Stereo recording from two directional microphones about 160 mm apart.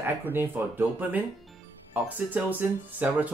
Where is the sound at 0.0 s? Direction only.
15° right (ahead or behind).